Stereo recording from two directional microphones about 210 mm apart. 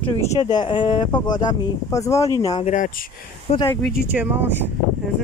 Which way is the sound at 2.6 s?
40° left (ahead or behind).